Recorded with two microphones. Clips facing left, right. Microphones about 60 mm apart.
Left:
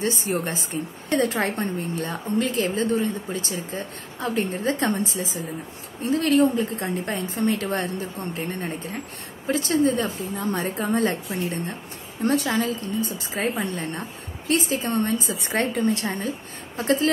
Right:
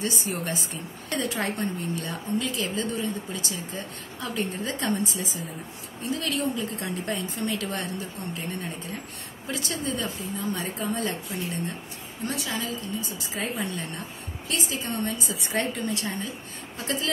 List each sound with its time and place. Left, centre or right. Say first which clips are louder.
0.0 s a woman's voice: left 5 dB; left
14.5 s a woman's voice: left 7 dB; left